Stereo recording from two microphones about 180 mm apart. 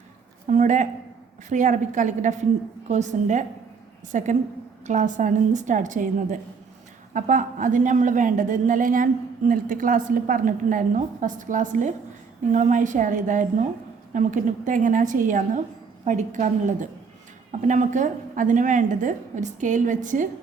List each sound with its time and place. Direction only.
0.4 s a woman's voice: 45° right (ahead or behind)